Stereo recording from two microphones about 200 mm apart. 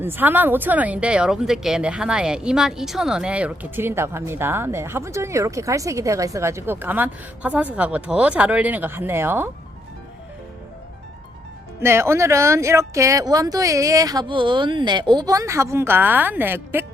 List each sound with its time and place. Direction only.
0.0 s speech: 10° right (ahead or behind)
11.8 s speech: 15° right (ahead or behind)